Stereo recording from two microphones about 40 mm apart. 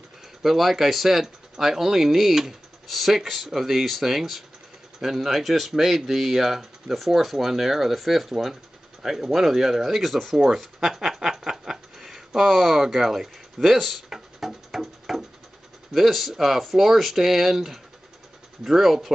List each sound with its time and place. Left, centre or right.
0.4 s speech: centre
10.3 s speech: centre
10.8 s a sound: centre
12.8 s speech: centre
14.0 s music: centre
15.9 s speech: centre